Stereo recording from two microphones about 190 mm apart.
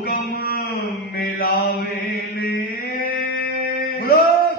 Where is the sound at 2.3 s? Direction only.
55° left (ahead or behind).